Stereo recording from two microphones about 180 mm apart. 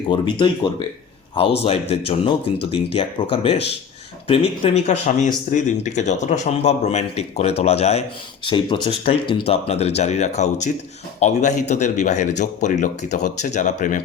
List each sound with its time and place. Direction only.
0.1 s speech: 25° left (ahead or behind); by 14.0 s 45° left (ahead or behind)